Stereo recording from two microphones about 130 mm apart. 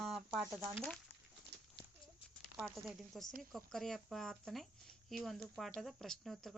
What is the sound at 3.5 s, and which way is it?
Speech, 5° left (ahead or behind).